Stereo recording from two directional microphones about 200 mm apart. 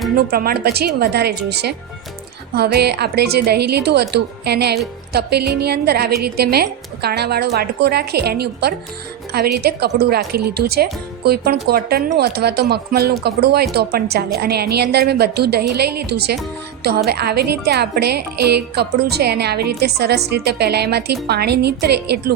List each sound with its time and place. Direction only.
0.2 s a woman's voice: 50° right (ahead or behind)